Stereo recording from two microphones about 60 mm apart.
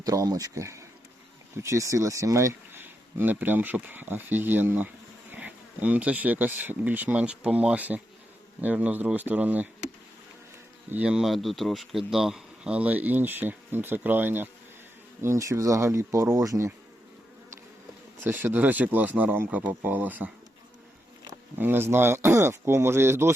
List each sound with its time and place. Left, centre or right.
0.0 s speech: right
2.7 s speech: right; by 7.8 s centre
7.8 s speech: right
10.9 s speech: right
11.2 s speech: centre
12.7 s speech: right
15.2 s speech: right
18.2 s speech: right
21.6 s speech: right